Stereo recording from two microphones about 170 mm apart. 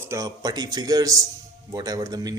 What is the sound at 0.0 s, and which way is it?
A man's voice, 20° right (ahead or behind).